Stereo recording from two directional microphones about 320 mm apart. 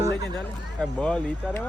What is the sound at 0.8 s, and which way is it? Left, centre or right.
Speech, centre.